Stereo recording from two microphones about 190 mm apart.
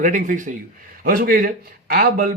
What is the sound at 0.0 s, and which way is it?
A man's voice, 45° right (ahead or behind).